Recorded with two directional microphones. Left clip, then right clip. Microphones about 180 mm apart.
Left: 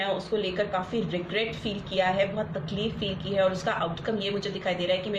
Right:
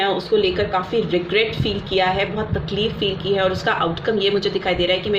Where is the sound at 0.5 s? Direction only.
40° right (ahead or behind).